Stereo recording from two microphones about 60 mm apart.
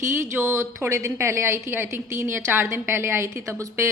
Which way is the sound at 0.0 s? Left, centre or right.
Right.